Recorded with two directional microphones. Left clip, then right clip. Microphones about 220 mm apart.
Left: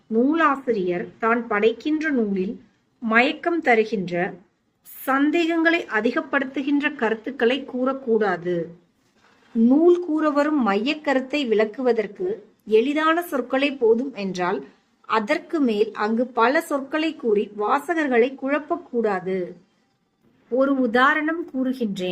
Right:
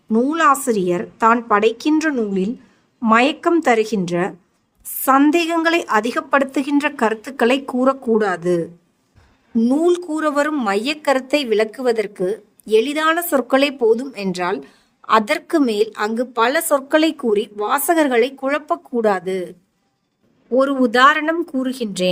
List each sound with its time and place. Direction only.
0.1 s a woman's voice: 55° right (ahead or behind)
9.6 s a woman's voice: 55° right (ahead or behind)
20.6 s speech: 50° right (ahead or behind)